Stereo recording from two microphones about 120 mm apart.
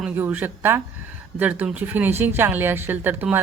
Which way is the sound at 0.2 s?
15° right (ahead or behind).